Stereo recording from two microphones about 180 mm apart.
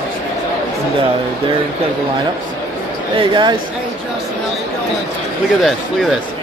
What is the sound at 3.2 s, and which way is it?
Speech, 25° right (ahead or behind).